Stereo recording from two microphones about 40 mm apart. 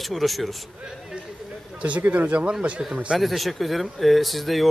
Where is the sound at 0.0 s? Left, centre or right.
Centre.